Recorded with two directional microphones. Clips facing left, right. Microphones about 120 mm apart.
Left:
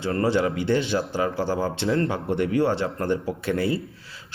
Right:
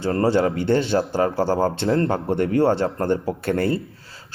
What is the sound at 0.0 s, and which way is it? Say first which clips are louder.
A man's voice: right 3 dB; 40° right (ahead or behind).